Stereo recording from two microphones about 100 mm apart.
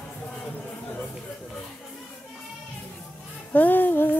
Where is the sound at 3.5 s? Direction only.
15° left (ahead or behind).